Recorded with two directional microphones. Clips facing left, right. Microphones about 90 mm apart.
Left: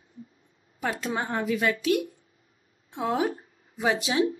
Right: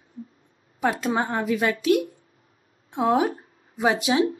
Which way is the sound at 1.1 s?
35° right (ahead or behind).